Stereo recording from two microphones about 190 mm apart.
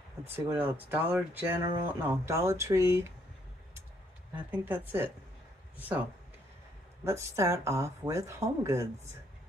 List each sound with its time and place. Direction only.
0.3 s speech: 10° right (ahead or behind)
4.5 s speech: 10° right (ahead or behind)
7.1 s speech: 15° right (ahead or behind)